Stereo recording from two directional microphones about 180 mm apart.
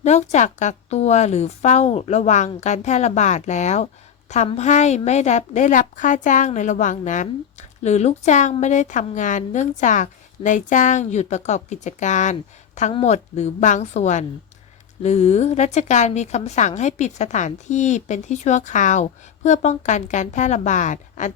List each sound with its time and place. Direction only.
0.0 s a woman's voice: 40° left (ahead or behind)